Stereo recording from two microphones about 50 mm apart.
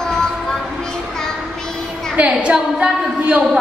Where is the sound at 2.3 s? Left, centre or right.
Right.